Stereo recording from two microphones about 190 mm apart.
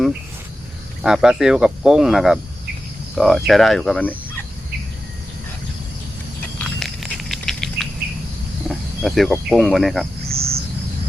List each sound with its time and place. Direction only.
1.0 s speech: 5° right (ahead or behind)
6.6 s patter: centre (ahead or behind)
8.7 s speech: centre (ahead or behind)
10.3 s cricket: 30° right (ahead or behind)